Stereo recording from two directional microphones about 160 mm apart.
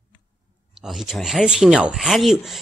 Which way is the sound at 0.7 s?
Centre (ahead or behind).